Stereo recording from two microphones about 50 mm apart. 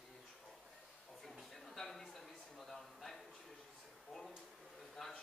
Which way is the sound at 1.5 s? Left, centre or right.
Centre.